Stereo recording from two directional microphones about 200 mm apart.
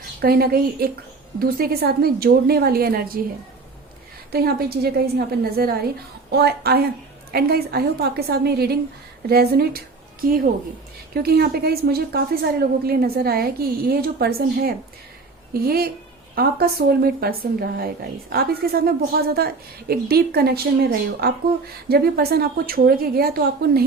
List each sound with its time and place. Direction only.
0.2 s a woman's voice: 50° right (ahead or behind)
4.3 s a woman's voice: 50° right (ahead or behind)
21.8 s a woman's voice: 50° right (ahead or behind)